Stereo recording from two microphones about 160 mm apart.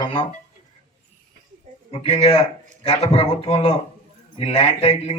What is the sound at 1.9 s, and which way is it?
A man's voice, 40° left (ahead or behind).